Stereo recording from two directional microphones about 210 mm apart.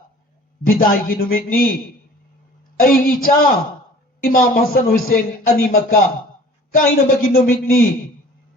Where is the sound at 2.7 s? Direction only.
45° left (ahead or behind).